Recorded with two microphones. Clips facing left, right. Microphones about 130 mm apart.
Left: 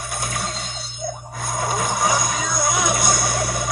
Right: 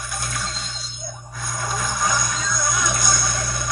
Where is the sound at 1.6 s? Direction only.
60° left (ahead or behind).